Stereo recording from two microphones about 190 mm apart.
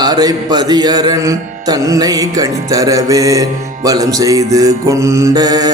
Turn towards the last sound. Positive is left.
turn(degrees=-20)  # may be behind; listen again after turning